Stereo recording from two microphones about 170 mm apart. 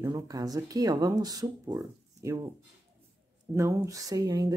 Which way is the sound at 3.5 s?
15° right (ahead or behind).